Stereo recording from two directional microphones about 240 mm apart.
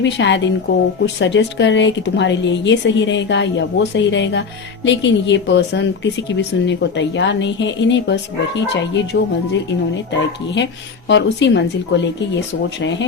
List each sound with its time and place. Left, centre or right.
0.0 s speech: left
11.1 s speech: left